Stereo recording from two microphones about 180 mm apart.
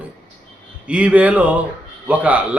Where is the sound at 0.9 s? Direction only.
5° right (ahead or behind).